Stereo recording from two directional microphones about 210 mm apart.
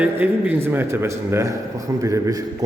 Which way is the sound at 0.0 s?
10° right (ahead or behind).